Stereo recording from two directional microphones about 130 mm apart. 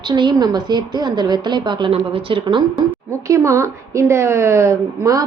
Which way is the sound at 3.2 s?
25° right (ahead or behind).